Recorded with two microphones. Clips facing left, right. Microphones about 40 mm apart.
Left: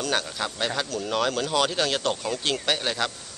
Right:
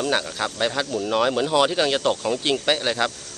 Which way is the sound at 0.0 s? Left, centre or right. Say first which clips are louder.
Right 4 dB; centre.